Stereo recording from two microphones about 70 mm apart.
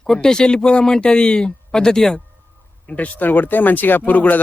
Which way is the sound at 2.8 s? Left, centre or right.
Left.